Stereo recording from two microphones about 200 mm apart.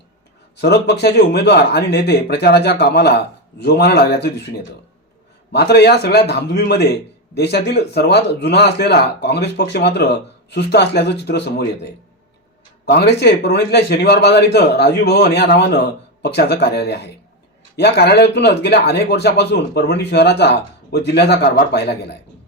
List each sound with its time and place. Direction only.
0.5 s a man's voice: 55° left (ahead or behind)
5.5 s a man's voice: 55° left (ahead or behind)
12.8 s a man's voice: 55° left (ahead or behind)